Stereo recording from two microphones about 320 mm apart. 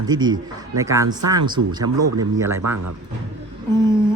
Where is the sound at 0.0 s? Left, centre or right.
Centre.